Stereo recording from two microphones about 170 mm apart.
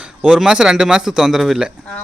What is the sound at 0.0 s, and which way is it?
A man's voice, 5° right (ahead or behind).